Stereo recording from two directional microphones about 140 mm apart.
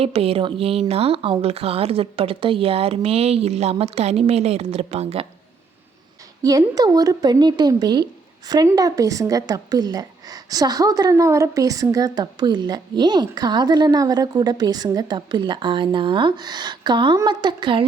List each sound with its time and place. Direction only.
0.0 s a woman's voice: 45° right (ahead or behind)
6.4 s a woman's voice: 25° right (ahead or behind)